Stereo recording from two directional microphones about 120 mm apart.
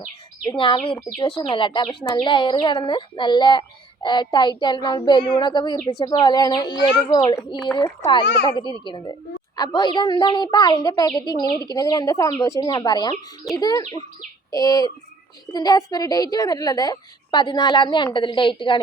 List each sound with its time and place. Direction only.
0.5 s a child's voice: 45° left (ahead or behind)